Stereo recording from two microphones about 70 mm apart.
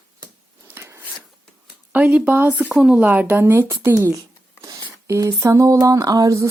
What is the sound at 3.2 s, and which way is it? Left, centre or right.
Speech, right.